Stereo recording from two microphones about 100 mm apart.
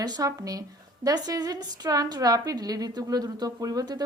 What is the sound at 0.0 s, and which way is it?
A woman's voice, 40° right (ahead or behind).